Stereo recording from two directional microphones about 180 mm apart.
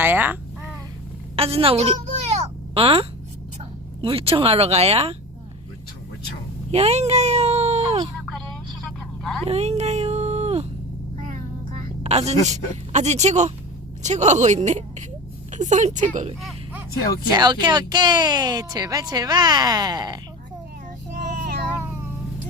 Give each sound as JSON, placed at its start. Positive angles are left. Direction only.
{"t": 0.0, "sound": "babbling", "side_deg": -10}
{"t": 1.4, "sound": "a sound", "side_deg": -30}
{"t": 4.0, "sound": "speech", "side_deg": -30}
{"t": 6.7, "sound": "speech", "side_deg": -35}
{"t": 8.8, "sound": "vehicle", "side_deg": 0}
{"t": 9.5, "sound": "a sound", "side_deg": -35}
{"t": 12.5, "sound": "speech", "side_deg": -40}
{"t": 17.3, "sound": "speech", "side_deg": -25}
{"t": 21.2, "sound": "child singing", "side_deg": -50}